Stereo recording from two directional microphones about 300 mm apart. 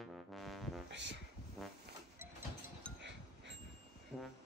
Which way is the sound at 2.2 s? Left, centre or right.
Centre.